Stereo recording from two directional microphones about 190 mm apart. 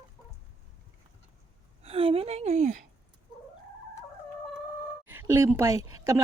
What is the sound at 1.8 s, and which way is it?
Speech, 30° right (ahead or behind).